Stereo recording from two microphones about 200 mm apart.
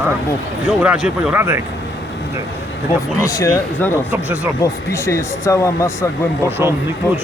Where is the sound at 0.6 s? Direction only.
5° right (ahead or behind).